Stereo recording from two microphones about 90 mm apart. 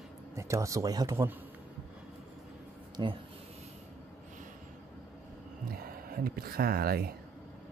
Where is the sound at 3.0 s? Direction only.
45° right (ahead or behind).